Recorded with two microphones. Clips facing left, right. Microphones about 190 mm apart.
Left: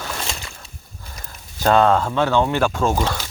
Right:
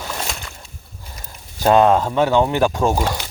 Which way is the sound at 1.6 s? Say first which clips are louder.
Right 2 dB; 15° right (ahead or behind).